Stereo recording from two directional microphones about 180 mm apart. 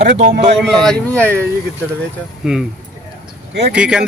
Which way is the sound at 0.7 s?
Centre (ahead or behind).